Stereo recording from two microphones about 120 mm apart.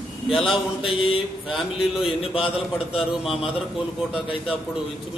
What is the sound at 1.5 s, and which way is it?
Speech, 5° right (ahead or behind).